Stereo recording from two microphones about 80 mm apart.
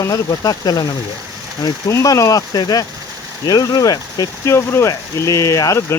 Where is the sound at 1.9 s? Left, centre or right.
Left.